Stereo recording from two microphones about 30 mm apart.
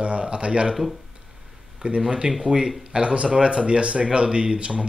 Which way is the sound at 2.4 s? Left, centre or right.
Right.